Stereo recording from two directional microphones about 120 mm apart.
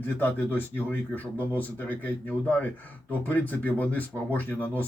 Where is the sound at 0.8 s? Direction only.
15° left (ahead or behind).